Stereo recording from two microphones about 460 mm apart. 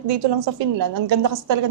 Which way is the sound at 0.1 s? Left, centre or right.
Right.